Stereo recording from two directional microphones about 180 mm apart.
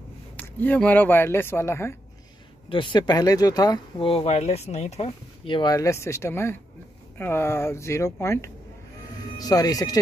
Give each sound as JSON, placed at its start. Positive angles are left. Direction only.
{"t": 0.4, "sound": "speech", "side_deg": 10}
{"t": 2.7, "sound": "speech", "side_deg": 25}